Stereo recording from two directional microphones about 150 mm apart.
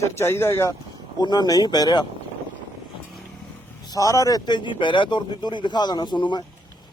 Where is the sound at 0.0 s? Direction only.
20° left (ahead or behind).